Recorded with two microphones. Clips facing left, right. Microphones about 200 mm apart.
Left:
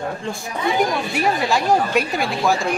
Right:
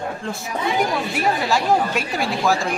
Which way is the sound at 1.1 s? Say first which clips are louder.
Left 1 dB; centre (ahead or behind).